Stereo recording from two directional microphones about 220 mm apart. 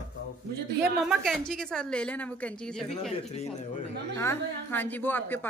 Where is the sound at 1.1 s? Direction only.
Centre (ahead or behind).